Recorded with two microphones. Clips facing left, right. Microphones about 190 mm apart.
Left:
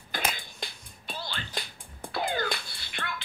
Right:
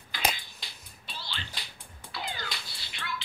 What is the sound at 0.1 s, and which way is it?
Music, 50° left (ahead or behind).